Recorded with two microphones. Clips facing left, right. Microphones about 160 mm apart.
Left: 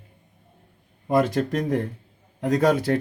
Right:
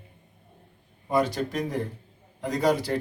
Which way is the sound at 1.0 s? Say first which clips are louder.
Left 4 dB; 50° left (ahead or behind).